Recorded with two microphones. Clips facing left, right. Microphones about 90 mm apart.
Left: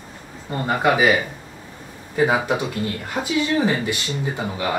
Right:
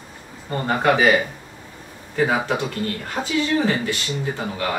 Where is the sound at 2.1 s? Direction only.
15° left (ahead or behind).